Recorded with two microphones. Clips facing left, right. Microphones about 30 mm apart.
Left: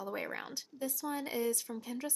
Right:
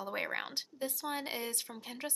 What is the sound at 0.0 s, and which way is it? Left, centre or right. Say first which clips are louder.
Speech: right 2 dB; right.